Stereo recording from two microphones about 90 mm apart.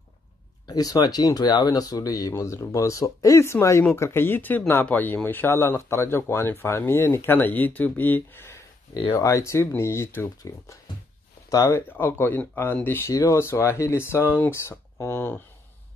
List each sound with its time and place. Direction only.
0.7 s speech: 45° left (ahead or behind)
12.0 s speech: 25° left (ahead or behind)
13.1 s speech: 35° left (ahead or behind)